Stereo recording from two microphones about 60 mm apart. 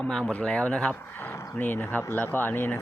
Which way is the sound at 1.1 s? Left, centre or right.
Left.